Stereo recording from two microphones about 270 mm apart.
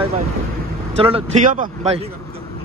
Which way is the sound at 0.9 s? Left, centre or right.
Right.